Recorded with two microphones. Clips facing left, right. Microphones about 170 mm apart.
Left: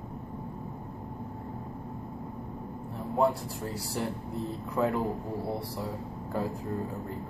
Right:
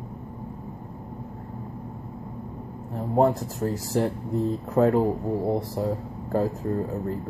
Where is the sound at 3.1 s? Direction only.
45° right (ahead or behind).